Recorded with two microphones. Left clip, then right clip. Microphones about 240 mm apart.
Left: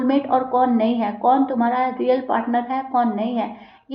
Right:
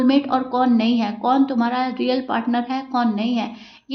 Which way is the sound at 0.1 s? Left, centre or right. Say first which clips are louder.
Left 1 dB; right.